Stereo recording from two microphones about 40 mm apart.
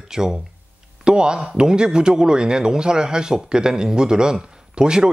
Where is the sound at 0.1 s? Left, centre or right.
Centre.